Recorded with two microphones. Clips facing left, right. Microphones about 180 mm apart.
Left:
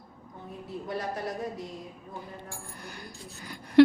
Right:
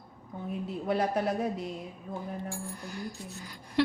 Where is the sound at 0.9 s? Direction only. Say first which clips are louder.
Right 5 dB; 65° right (ahead or behind).